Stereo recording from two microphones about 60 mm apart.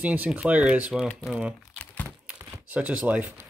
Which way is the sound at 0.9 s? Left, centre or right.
Centre.